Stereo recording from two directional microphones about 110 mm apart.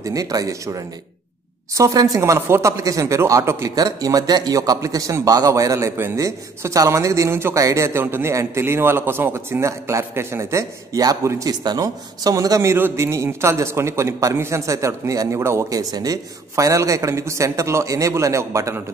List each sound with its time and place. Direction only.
0.0 s speech: 35° right (ahead or behind)